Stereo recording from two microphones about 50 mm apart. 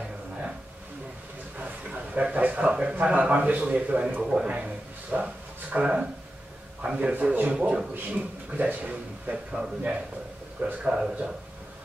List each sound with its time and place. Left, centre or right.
1.6 s a sound: right
2.7 s speech: right
7.9 s a man's voice: right
9.3 s speech: centre